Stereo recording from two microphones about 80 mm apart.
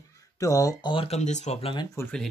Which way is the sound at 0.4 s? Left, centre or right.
Left.